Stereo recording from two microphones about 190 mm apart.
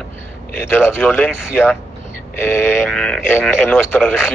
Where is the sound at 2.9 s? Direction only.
5° left (ahead or behind).